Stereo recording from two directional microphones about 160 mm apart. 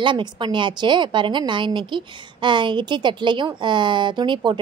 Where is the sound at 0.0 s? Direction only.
30° right (ahead or behind).